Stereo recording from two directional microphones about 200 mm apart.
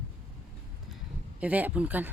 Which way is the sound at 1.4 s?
10° right (ahead or behind).